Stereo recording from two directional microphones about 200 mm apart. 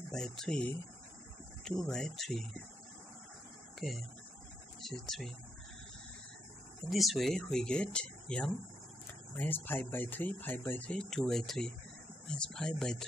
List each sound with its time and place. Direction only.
0.1 s speech: 5° left (ahead or behind)
3.8 s speech: centre (ahead or behind)
6.9 s speech: centre (ahead or behind)